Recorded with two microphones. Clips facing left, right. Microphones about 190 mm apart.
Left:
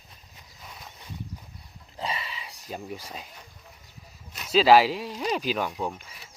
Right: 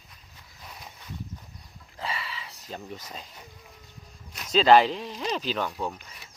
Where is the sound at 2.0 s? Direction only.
20° left (ahead or behind).